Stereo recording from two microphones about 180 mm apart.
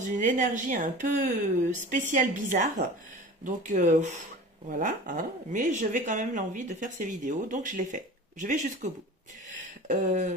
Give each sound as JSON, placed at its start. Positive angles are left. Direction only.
{"t": 0.1, "sound": "speech", "side_deg": -45}